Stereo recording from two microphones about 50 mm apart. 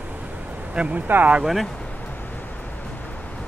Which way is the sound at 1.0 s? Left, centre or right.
Right.